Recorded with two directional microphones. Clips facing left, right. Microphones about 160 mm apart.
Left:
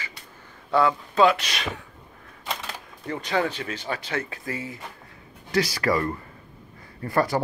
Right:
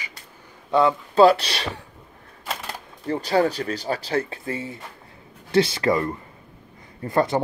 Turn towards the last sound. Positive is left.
turn(degrees=-25)  # may be behind; listen again after turning